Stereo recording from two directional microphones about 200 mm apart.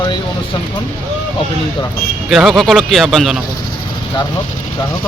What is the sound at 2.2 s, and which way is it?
Speech, centre (ahead or behind).